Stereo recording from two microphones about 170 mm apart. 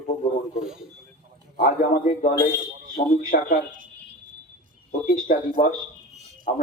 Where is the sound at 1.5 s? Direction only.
55° left (ahead or behind).